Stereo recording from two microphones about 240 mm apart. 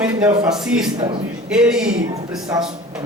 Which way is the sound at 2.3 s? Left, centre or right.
Centre.